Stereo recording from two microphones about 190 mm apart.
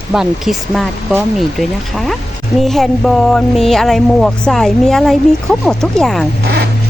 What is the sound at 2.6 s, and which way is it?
Speech, centre (ahead or behind).